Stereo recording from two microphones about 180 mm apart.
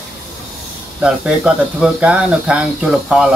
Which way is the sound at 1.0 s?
5° right (ahead or behind).